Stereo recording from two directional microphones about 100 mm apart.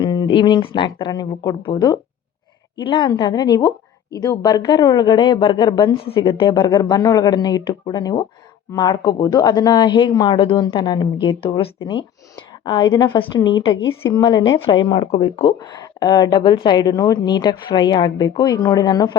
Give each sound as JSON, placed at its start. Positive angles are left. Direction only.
{"t": 0.0, "sound": "a woman's voice", "side_deg": 50}
{"t": 14.1, "sound": "a woman's voice", "side_deg": 40}
{"t": 15.2, "sound": "a woman's voice", "side_deg": 65}
{"t": 15.5, "sound": "a woman's voice", "side_deg": 45}